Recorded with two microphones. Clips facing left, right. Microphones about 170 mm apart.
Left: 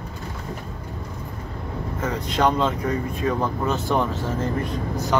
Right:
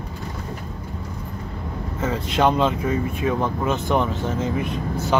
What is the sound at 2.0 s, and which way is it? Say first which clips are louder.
Speech: right 2 dB; 25° right (ahead or behind).